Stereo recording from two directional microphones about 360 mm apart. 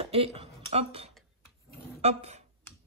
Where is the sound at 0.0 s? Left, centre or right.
Centre.